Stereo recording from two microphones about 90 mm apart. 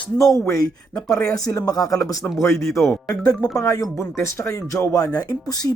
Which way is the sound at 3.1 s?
45° left (ahead or behind).